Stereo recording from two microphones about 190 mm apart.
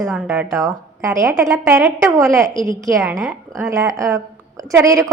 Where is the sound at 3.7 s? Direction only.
15° right (ahead or behind).